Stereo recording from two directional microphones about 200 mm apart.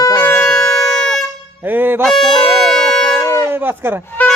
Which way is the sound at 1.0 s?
Centre (ahead or behind).